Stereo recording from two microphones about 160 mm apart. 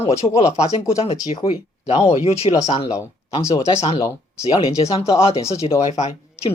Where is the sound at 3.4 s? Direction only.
20° left (ahead or behind).